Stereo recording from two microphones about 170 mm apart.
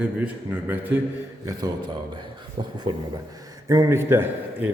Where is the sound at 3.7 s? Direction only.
20° right (ahead or behind).